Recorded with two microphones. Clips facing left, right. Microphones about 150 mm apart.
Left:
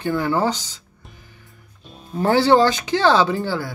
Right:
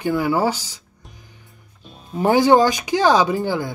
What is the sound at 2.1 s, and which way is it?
Speech, 15° right (ahead or behind).